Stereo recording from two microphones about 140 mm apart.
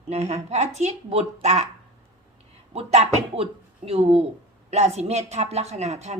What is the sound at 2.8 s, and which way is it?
A woman's voice, 45° right (ahead or behind).